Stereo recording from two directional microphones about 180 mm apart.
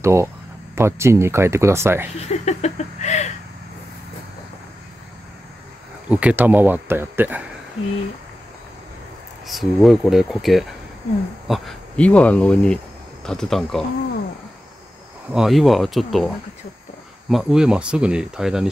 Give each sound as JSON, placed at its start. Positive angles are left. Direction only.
{"t": 0.0, "sound": "speech", "side_deg": -15}
{"t": 2.1, "sound": "a sound", "side_deg": 35}
{"t": 6.0, "sound": "speech", "side_deg": -5}
{"t": 9.5, "sound": "speech", "side_deg": 0}
{"t": 15.3, "sound": "speech", "side_deg": 0}